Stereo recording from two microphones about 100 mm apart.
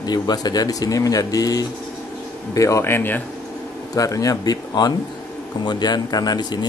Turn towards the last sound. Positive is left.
turn(degrees=45)  # may be behind; listen again after turning